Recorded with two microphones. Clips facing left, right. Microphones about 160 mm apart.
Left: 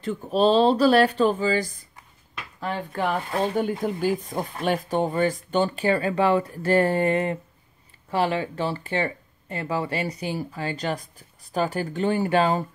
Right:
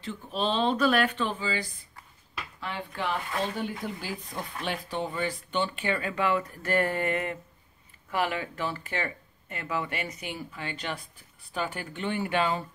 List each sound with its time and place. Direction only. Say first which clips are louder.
0.0 s speech: left 10 dB; 45° left (ahead or behind)